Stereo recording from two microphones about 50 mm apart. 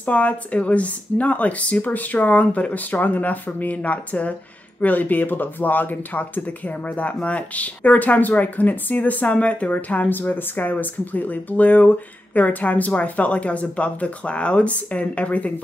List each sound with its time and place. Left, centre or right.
0.0 s speech: left